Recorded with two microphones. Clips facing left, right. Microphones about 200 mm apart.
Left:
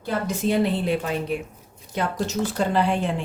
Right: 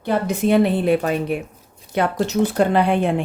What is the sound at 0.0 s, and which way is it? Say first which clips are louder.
Speech: right 5 dB; 60° right (ahead or behind).